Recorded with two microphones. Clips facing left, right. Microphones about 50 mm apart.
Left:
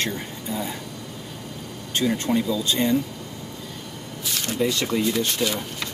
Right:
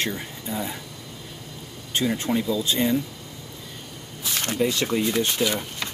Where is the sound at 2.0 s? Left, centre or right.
Centre.